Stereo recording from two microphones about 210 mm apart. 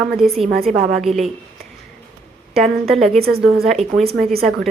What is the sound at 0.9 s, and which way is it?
Speech, centre (ahead or behind).